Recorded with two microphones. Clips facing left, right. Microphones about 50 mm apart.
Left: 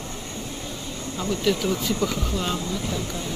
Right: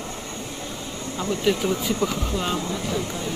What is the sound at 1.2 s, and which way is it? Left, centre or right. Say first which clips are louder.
Speech: right 1 dB; centre.